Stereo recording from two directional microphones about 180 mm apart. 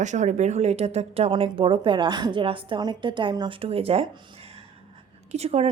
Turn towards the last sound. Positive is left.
turn(degrees=-35)  # may be behind; listen again after turning